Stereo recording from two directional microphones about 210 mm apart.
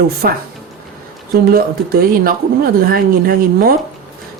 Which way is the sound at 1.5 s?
45° right (ahead or behind).